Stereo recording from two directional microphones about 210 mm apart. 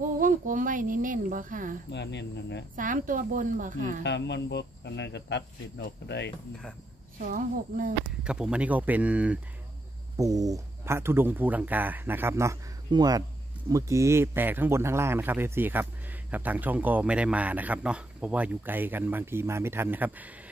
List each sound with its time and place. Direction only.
0.2 s a sound: 40° right (ahead or behind)
1.9 s speech: 55° left (ahead or behind)
2.7 s a woman's voice: 40° right (ahead or behind)
4.0 s speech: 55° left (ahead or behind)
7.2 s a woman's voice: 40° right (ahead or behind)
8.2 s speech: 5° right (ahead or behind)